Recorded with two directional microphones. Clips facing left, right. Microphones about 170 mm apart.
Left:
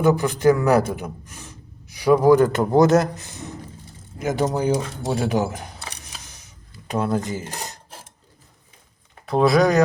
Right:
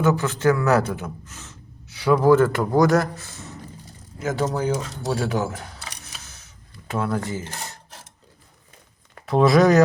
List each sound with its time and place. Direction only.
0.0 s a man's voice: 15° left (ahead or behind)
6.2 s a sound: 15° left (ahead or behind)
9.2 s speech: centre (ahead or behind)